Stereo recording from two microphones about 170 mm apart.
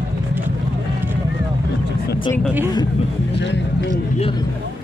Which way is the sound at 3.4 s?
90° left.